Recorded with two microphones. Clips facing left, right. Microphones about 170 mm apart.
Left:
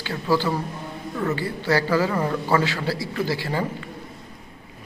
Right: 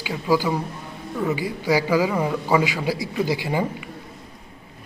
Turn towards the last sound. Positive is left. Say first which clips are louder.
# right 2 dB
turn(degrees=-15)  # may be behind; listen again after turning